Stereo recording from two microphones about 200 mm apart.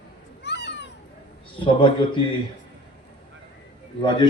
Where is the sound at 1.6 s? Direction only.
25° left (ahead or behind).